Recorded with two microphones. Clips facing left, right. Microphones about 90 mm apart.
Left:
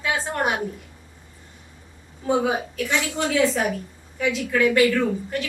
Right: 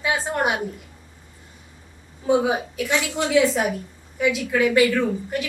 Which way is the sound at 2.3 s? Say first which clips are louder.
Right 2 dB; 15° right (ahead or behind).